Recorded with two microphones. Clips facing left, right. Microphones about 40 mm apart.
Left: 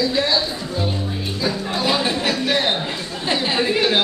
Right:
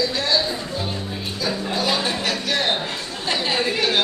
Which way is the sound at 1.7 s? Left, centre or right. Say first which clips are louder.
Left 3 dB; left.